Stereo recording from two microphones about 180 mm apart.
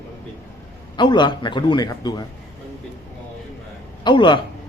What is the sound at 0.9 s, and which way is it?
Speech, 25° left (ahead or behind).